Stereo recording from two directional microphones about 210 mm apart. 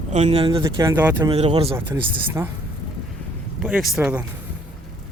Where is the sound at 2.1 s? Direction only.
10° right (ahead or behind).